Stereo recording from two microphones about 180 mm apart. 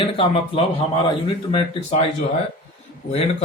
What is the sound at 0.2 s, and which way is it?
Speech, 30° left (ahead or behind).